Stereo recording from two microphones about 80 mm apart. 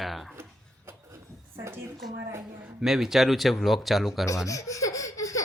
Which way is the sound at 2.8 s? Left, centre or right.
Centre.